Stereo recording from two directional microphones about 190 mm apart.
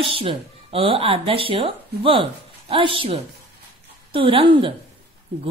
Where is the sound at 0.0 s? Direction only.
25° right (ahead or behind).